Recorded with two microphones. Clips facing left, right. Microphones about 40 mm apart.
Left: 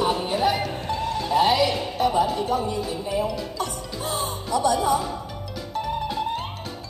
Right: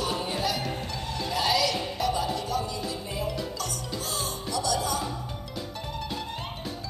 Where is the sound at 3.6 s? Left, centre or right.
Left.